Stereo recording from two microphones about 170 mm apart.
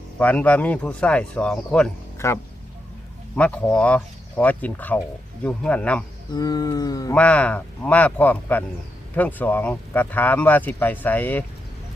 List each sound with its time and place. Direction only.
0.2 s speech: 10° left (ahead or behind)
2.1 s speech: 15° left (ahead or behind)
6.3 s a sound: 20° left (ahead or behind)
7.1 s speech: 5° left (ahead or behind)